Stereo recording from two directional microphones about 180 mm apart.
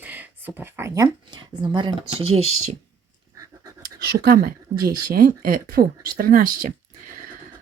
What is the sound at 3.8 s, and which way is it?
Speech, 65° right (ahead or behind).